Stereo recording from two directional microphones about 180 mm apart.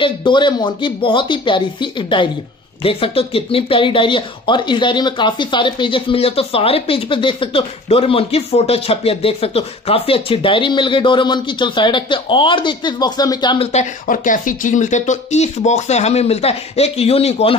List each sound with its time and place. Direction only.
0.0 s speech: 25° left (ahead or behind)
13.7 s speech: 40° left (ahead or behind)